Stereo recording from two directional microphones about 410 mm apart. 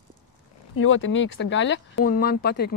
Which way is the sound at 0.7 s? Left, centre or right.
Left.